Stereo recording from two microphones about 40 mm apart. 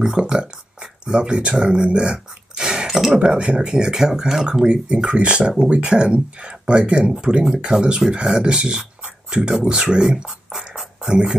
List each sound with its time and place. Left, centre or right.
0.0 s speech: centre
2.9 s speech: centre
3.2 s speech: right; by 4.6 s centre
4.6 s speech: right